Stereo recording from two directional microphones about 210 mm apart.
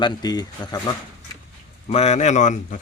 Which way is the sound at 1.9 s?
30° left (ahead or behind).